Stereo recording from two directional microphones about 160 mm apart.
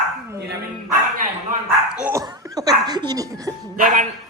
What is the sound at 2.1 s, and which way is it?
Speech, 25° right (ahead or behind).